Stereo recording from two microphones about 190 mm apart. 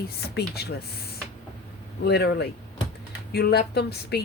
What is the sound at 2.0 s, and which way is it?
A woman's voice, 60° left (ahead or behind).